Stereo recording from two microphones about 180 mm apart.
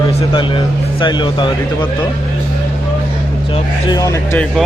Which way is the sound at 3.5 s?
20° left (ahead or behind).